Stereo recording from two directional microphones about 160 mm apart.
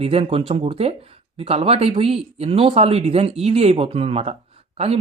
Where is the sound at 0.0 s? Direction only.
40° right (ahead or behind).